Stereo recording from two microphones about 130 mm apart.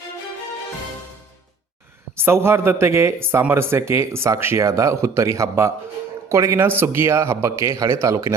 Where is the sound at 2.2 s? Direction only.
20° right (ahead or behind).